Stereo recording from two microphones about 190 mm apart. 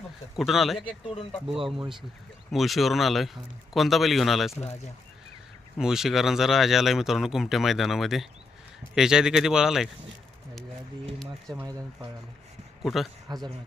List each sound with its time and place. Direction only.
0.3 s speech: centre (ahead or behind)
1.0 s speech: 30° left (ahead or behind)
1.5 s speech: 25° right (ahead or behind)
2.5 s speech: centre (ahead or behind)
5.7 s speech: centre (ahead or behind)
11.5 s speech: 10° right (ahead or behind)
13.2 s a man's voice: 20° right (ahead or behind)